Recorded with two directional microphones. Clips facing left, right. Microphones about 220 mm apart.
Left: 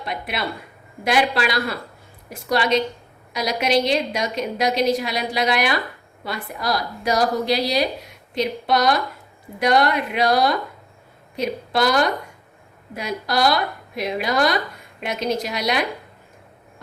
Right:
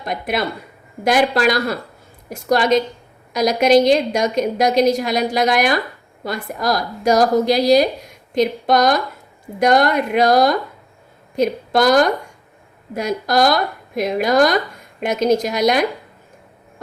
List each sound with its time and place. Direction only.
0.0 s a woman's voice: 45° right (ahead or behind)